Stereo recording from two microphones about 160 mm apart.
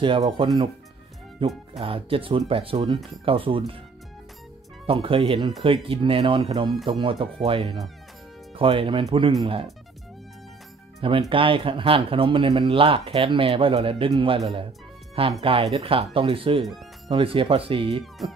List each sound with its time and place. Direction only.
0.0 s speech: 30° right (ahead or behind)
1.7 s speech: 35° right (ahead or behind)
4.8 s speech: 35° right (ahead or behind)
11.0 s speech: 35° right (ahead or behind)
15.4 s speech: 35° right (ahead or behind)